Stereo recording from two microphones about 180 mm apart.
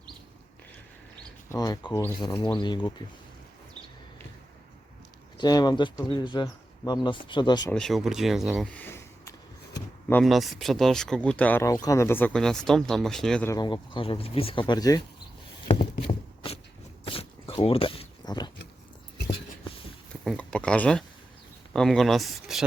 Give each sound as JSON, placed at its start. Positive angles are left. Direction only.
{"t": 1.5, "sound": "speech", "side_deg": 20}
{"t": 5.4, "sound": "speech", "side_deg": 25}
{"t": 7.7, "sound": "speech", "side_deg": 5}
{"t": 10.2, "sound": "speech", "side_deg": 0}
{"t": 13.5, "sound": "speech", "side_deg": 25}
{"t": 14.7, "sound": "speech", "side_deg": 20}
{"t": 15.6, "sound": "a sound", "side_deg": 30}
{"t": 20.2, "sound": "a sound", "side_deg": 5}
{"t": 21.7, "sound": "speech", "side_deg": 0}